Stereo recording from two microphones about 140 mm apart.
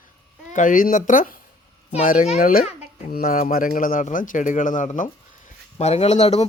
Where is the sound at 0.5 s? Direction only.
70° left (ahead or behind).